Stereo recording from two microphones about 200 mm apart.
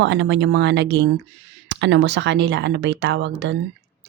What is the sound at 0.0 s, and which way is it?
Speech, 65° right (ahead or behind).